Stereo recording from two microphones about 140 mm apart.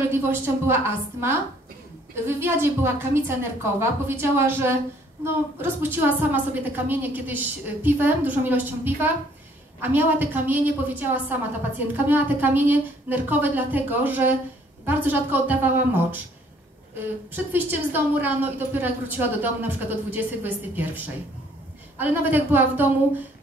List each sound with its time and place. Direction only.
0.1 s a woman's voice: 15° right (ahead or behind)
17.3 s a woman's voice: 15° right (ahead or behind)